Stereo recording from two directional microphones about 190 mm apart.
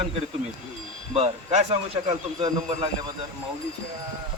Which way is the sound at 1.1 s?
35° right (ahead or behind).